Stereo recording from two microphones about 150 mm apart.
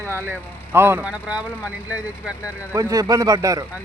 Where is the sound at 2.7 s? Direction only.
25° right (ahead or behind).